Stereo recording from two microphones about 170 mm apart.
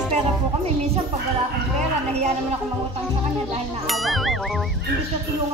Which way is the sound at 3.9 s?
Centre (ahead or behind).